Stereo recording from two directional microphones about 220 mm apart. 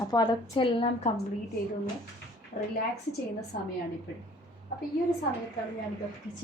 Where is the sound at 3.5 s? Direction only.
40° left (ahead or behind).